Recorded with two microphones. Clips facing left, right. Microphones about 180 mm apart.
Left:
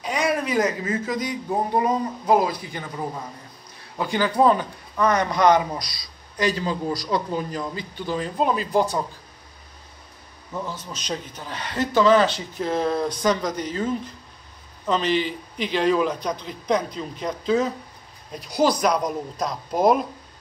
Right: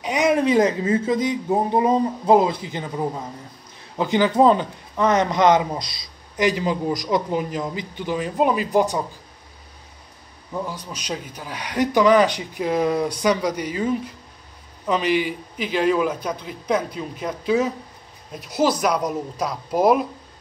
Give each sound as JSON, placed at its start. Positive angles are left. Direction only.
{"t": 0.0, "sound": "a woman's voice", "side_deg": -20}
{"t": 10.5, "sound": "a man's voice", "side_deg": -10}